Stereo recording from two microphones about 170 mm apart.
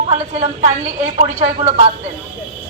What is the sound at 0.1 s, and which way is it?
A woman's voice, 45° right (ahead or behind).